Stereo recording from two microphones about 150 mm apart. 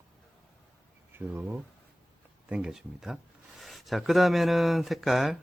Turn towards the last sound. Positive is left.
turn(degrees=0)  # may be behind; listen again after turning